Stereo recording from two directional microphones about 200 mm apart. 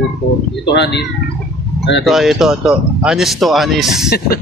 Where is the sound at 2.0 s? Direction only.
Centre (ahead or behind).